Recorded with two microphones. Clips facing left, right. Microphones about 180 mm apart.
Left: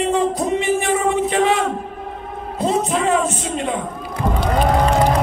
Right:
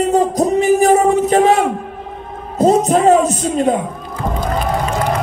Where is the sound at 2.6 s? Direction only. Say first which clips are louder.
Right 7 dB; 40° right (ahead or behind).